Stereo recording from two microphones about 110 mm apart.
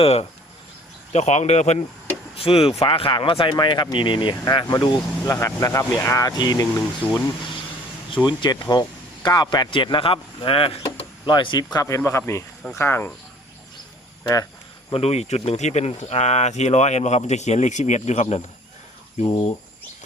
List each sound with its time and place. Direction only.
0.0 s speech: 65° left (ahead or behind)
1.1 s speech: 90° left
2.3 s speech: 60° left (ahead or behind); by 4.9 s 40° left (ahead or behind)
5.2 s speech: 25° left (ahead or behind)
8.1 s speech: 50° left (ahead or behind); by 11.0 s 65° left (ahead or behind)
11.3 s speech: 45° left (ahead or behind)
11.8 s speech: 30° left (ahead or behind)
14.9 s speech: 75° left (ahead or behind)
19.2 s speech: 35° left (ahead or behind)